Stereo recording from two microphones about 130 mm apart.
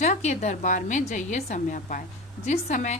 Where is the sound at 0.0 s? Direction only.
65° left (ahead or behind).